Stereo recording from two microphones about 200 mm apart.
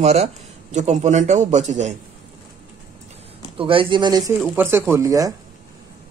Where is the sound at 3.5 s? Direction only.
25° right (ahead or behind).